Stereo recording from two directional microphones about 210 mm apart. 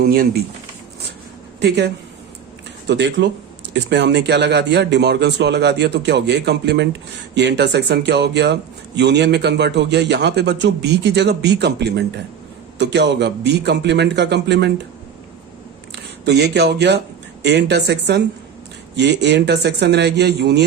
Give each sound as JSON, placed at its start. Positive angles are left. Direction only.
{"t": 0.0, "sound": "a man's voice", "side_deg": -45}
{"t": 1.5, "sound": "a man's voice", "side_deg": -55}
{"t": 16.2, "sound": "a man's voice", "side_deg": -50}